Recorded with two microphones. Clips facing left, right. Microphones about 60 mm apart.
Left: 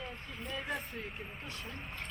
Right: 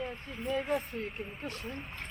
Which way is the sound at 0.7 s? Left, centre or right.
Right.